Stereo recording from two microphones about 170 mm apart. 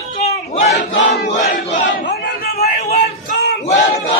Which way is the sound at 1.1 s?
80° left.